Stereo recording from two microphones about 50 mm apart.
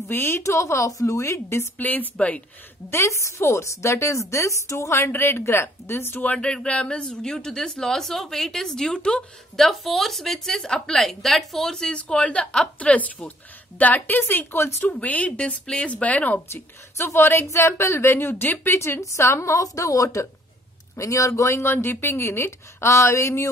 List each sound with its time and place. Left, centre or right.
0.1 s a woman's voice: left
0.4 s speech: left
1.8 s speech: left
2.9 s speech: left
6.2 s speech: left
7.2 s speech: centre
9.6 s a woman's voice: centre
12.0 s speech: left
15.9 s speech: left
16.5 s a woman's voice: left
17.2 s a woman's voice: left
18.3 s speech: left
18.7 s speech: left
21.6 s a woman's voice: left